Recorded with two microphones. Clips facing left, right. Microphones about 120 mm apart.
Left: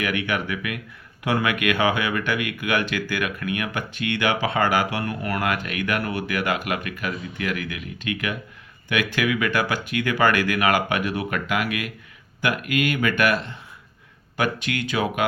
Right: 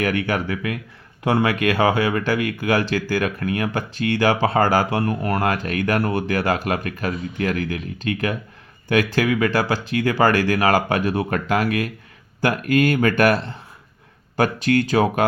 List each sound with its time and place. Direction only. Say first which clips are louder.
0.0 s speech: right 4 dB; 40° right (ahead or behind)